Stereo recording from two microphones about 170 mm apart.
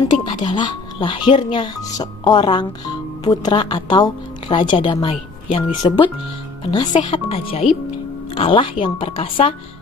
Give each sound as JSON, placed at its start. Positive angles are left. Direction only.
{"t": 0.2, "sound": "speech", "side_deg": 30}